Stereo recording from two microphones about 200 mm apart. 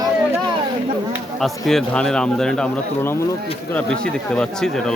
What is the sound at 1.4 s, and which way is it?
A man's voice, centre (ahead or behind).